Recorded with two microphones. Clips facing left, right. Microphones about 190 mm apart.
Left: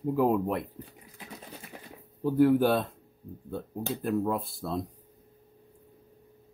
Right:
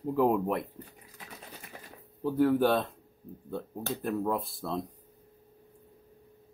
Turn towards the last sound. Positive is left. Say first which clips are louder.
# left 1 dB
turn(degrees=0)  # may be behind; listen again after turning